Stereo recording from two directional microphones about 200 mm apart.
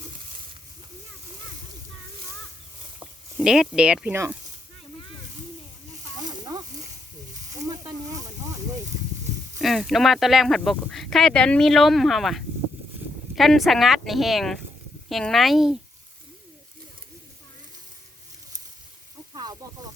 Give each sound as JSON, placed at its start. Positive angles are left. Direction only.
{"t": 3.3, "sound": "speech", "side_deg": 0}
{"t": 6.2, "sound": "a sound", "side_deg": -20}
{"t": 9.6, "sound": "speech", "side_deg": 0}
{"t": 19.3, "sound": "snake", "side_deg": -20}